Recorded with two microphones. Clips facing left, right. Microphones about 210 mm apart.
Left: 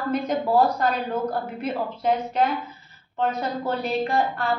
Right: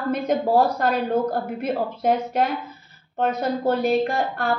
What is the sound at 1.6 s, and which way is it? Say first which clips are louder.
A woman's voice: right 3 dB; 50° right (ahead or behind).